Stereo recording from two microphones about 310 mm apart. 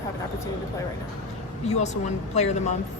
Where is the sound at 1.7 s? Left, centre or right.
Left.